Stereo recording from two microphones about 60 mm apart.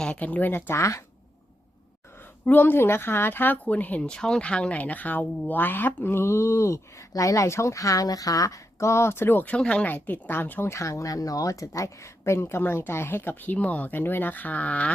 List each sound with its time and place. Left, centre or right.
0.0 s speech: left
0.7 s speech: left
2.4 s speech: left
4.1 s speech: centre; by 7.0 s left
7.1 s speech: left
9.6 s speech: centre
9.8 s speech: left
10.7 s speech: left
13.6 s speech: left